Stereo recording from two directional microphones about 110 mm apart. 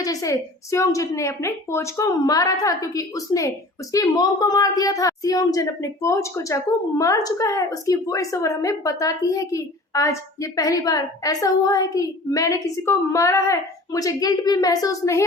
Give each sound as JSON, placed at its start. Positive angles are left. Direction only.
{"t": 0.0, "sound": "a woman's voice", "side_deg": 30}